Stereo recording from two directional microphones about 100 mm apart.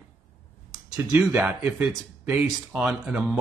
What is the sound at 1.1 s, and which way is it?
Speech, 15° right (ahead or behind).